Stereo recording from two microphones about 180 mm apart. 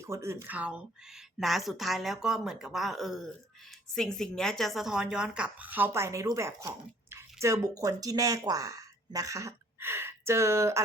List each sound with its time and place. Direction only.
0.0 s speech: 15° right (ahead or behind)